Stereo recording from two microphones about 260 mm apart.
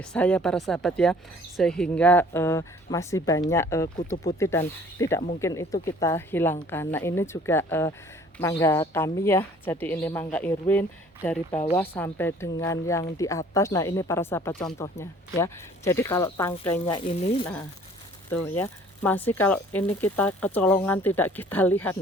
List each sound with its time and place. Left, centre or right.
0.0 s speech: centre
16.8 s speech: left
18.3 s speech: centre